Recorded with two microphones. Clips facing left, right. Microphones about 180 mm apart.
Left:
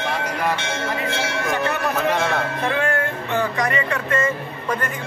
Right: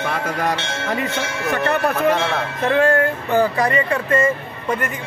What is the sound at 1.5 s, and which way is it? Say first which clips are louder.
Music: right 5 dB; 60° right (ahead or behind).